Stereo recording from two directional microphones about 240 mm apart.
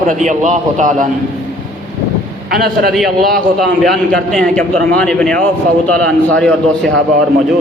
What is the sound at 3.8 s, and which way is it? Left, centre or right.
A man's voice, centre.